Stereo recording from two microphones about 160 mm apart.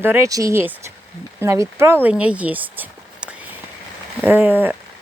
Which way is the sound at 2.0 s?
5° right (ahead or behind).